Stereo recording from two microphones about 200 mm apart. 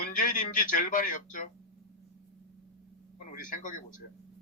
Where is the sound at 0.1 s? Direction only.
40° left (ahead or behind).